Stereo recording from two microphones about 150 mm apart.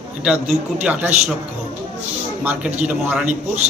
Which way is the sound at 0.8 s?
5° right (ahead or behind).